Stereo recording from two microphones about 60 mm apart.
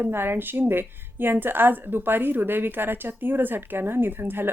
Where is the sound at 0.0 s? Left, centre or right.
Right.